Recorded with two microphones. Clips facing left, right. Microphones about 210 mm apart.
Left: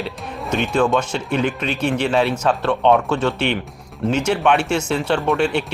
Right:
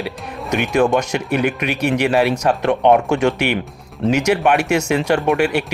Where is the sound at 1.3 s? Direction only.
10° right (ahead or behind).